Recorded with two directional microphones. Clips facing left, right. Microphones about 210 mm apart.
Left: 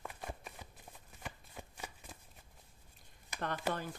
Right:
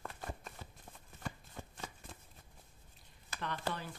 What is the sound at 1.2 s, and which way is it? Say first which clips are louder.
Shuffling cards: right 3 dB; 10° left (ahead or behind).